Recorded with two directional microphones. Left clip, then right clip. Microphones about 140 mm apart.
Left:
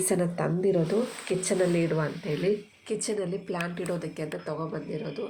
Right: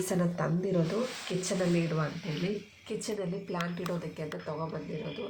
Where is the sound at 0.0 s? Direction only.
30° left (ahead or behind).